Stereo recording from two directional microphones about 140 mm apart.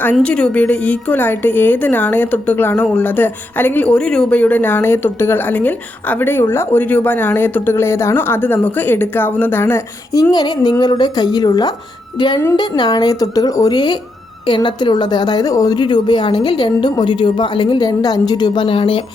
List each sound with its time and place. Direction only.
0.0 s a woman's voice: 10° left (ahead or behind); by 19.0 s 40° left (ahead or behind)